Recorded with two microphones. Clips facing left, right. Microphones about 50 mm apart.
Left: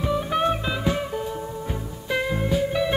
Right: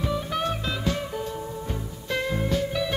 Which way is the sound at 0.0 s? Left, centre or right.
Centre.